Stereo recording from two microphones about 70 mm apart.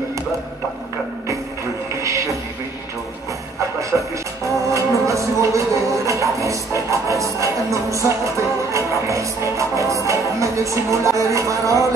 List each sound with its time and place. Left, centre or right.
3.9 s music: centre
4.6 s music: right